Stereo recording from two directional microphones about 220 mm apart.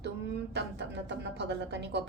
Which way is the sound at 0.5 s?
50° right (ahead or behind).